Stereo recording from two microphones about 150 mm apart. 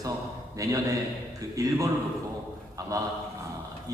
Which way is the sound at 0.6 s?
20° right (ahead or behind).